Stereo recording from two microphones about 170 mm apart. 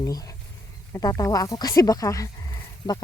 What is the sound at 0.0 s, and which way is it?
Speech, 20° left (ahead or behind).